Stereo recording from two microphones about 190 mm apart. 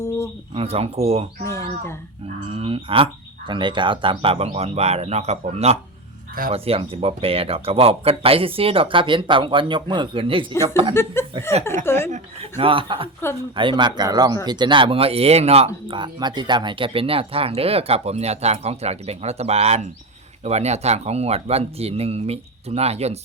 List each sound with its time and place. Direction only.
0.5 s speech: 30° right (ahead or behind)
1.5 s speech: 15° left (ahead or behind)
2.5 s speech: 30° right (ahead or behind)
10.9 s speech: 15° left (ahead or behind)
12.1 s speech: 30° right (ahead or behind)